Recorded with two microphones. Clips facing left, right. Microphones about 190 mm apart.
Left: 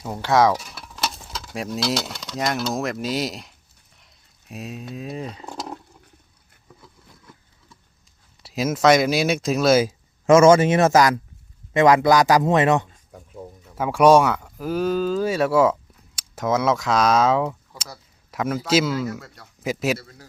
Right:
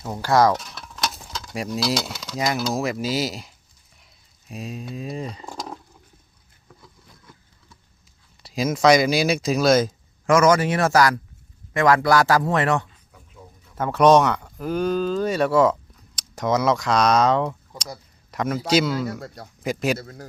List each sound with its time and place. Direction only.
0.0 s speech: 5° left (ahead or behind)
6.7 s a sound: centre (ahead or behind)
8.4 s speech: 5° left (ahead or behind)
10.2 s speech: 25° left (ahead or behind)
12.9 s a sound: 45° left (ahead or behind)
13.7 s a man's voice: 10° left (ahead or behind)
20.0 s a man's voice: 50° right (ahead or behind)